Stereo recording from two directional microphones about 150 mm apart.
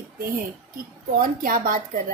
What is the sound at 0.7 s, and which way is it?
A woman's voice, 65° right (ahead or behind).